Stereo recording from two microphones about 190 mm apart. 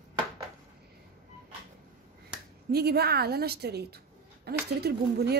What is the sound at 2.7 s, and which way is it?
A woman's voice, 55° right (ahead or behind).